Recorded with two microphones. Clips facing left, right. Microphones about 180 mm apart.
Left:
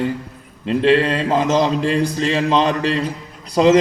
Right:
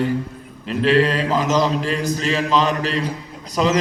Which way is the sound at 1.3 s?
25° left (ahead or behind).